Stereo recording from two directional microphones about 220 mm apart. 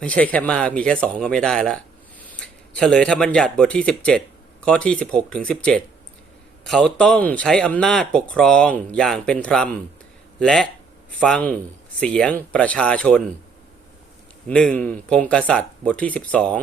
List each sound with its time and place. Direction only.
0.0 s speech: 5° left (ahead or behind)
14.4 s speech: 5° left (ahead or behind)